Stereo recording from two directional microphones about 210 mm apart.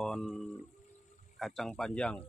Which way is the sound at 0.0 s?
Centre (ahead or behind).